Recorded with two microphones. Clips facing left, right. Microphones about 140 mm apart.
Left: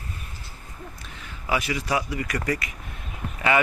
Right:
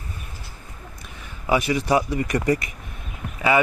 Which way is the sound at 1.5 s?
20° right (ahead or behind).